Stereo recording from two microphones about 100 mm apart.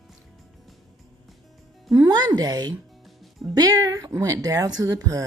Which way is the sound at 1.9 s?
40° right (ahead or behind).